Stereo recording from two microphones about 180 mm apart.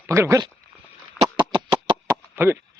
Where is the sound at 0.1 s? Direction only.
15° right (ahead or behind).